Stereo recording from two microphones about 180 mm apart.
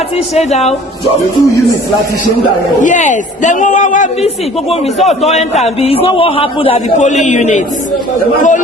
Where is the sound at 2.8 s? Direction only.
45° left (ahead or behind).